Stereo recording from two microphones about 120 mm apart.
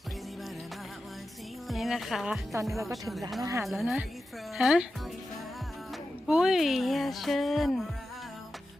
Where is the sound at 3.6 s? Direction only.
Centre (ahead or behind).